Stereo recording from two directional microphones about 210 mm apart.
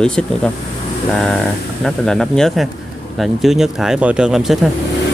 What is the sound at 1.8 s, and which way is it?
Speech, centre (ahead or behind).